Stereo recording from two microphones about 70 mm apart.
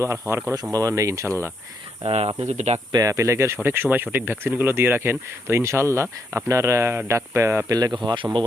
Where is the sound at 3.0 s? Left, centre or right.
Right.